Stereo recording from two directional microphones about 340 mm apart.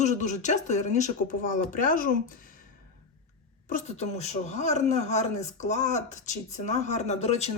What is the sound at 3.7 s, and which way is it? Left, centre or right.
A man's voice, centre.